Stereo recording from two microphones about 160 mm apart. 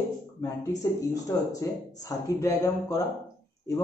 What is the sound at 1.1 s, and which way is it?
Speech, 20° left (ahead or behind).